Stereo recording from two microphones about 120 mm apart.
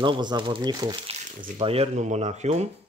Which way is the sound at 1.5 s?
55° right (ahead or behind).